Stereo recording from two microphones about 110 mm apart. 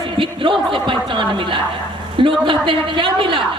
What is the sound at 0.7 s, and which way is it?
A man's voice, 45° right (ahead or behind).